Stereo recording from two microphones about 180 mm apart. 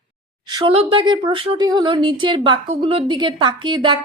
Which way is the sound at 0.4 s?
25° right (ahead or behind).